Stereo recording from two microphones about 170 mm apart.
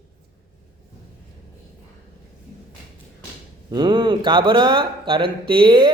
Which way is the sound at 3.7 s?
25° right (ahead or behind).